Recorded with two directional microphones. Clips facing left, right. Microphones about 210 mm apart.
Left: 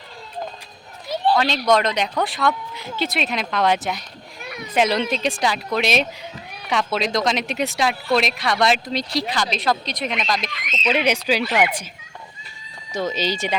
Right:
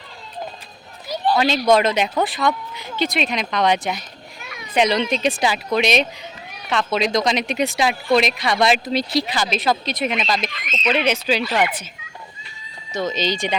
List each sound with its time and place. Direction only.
1.0 s a sound: 25° left (ahead or behind)
1.4 s speech: 5° right (ahead or behind); by 7.0 s 10° left (ahead or behind)
7.0 s speech: centre (ahead or behind)
10.7 s speech: 10° left (ahead or behind)
12.9 s speech: 10° left (ahead or behind)